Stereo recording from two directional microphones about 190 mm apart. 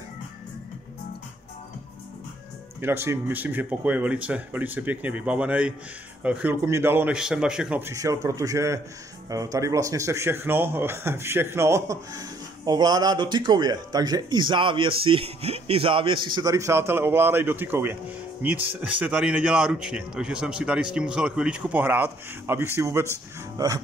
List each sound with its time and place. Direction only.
2.8 s speech: 15° right (ahead or behind)
7.9 s a man's voice: 15° right (ahead or behind)